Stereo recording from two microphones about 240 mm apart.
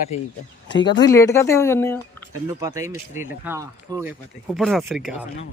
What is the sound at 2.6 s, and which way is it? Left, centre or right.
Speech, centre.